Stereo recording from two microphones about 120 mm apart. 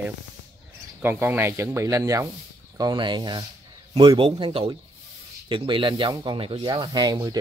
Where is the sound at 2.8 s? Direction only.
35° right (ahead or behind).